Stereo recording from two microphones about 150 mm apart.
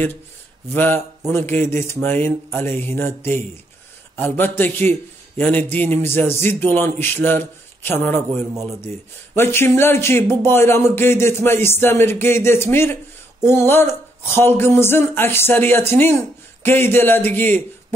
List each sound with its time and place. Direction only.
0.7 s speech: 15° left (ahead or behind)